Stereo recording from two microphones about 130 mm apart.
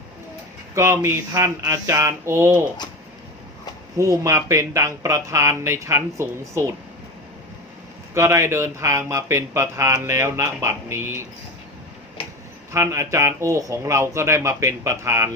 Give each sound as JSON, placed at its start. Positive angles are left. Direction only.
{"t": 0.8, "sound": "speech", "side_deg": -20}
{"t": 3.9, "sound": "speech", "side_deg": -25}
{"t": 8.1, "sound": "speech", "side_deg": -20}
{"t": 12.7, "sound": "speech", "side_deg": -20}